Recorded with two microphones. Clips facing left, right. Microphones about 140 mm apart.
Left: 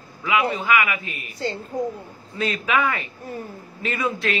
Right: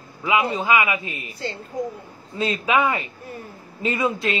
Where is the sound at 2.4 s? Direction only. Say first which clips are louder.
Right 2 dB; 25° right (ahead or behind).